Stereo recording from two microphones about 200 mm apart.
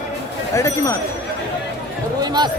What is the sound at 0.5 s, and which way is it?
Speech, 15° left (ahead or behind).